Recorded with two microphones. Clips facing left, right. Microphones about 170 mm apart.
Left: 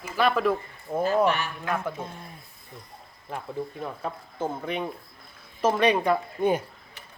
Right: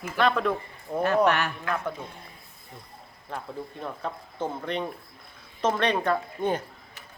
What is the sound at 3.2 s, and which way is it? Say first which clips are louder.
A man's voice: left 3 dB; 5° left (ahead or behind).